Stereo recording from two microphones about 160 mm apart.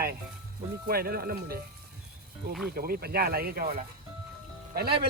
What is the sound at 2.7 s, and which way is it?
Speech, 70° right (ahead or behind).